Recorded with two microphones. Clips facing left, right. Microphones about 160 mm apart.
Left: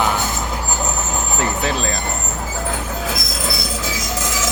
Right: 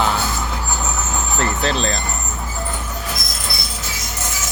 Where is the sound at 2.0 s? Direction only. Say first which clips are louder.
Left 2 dB; 75° left (ahead or behind).